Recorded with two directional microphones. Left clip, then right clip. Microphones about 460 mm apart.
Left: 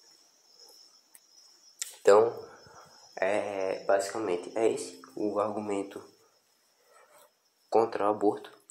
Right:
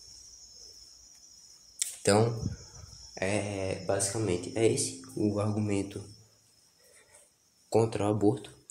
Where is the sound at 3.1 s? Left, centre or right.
Centre.